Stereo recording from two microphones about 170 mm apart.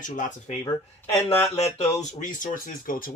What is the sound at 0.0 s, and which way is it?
Speech, 50° left (ahead or behind).